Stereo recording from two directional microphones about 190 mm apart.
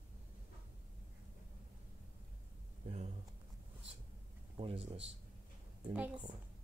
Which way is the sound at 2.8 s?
35° right (ahead or behind).